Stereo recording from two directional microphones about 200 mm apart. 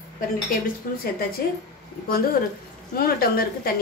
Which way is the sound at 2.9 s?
50° left (ahead or behind).